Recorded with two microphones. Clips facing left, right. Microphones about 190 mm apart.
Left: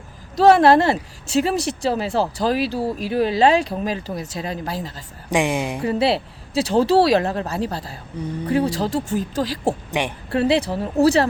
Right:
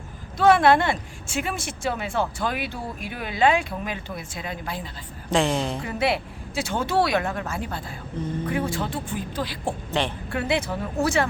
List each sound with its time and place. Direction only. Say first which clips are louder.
0.3 s speech: left 5 dB; 35° left (ahead or behind)
5.3 s a woman's voice: left 2 dB; 15° left (ahead or behind)
5.8 s speech: left 5 dB; 30° left (ahead or behind)
9.9 s a woman's voice: right 2 dB; 15° left (ahead or behind)
10.3 s speech: left 7 dB; 35° left (ahead or behind)